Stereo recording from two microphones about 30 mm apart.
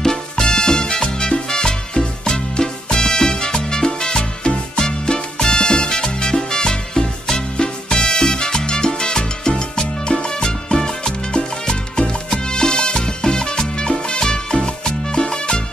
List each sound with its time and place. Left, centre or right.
0.0 s music: left
4.7 s salsa music: left
14.2 s music: left